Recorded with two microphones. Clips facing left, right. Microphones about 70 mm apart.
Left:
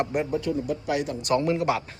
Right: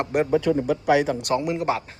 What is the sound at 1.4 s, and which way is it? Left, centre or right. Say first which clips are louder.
Speech: left 1 dB; centre.